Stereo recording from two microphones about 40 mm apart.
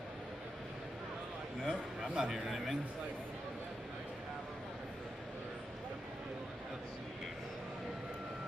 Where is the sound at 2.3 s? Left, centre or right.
Centre.